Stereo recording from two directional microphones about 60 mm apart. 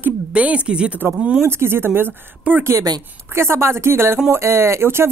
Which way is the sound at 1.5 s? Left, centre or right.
Right.